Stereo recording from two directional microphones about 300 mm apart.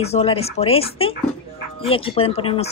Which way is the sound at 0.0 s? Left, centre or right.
Centre.